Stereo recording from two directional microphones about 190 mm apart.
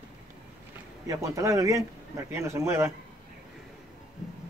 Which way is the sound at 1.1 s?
15° right (ahead or behind).